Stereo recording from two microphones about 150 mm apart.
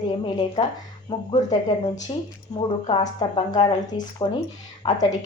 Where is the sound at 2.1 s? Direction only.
35° left (ahead or behind).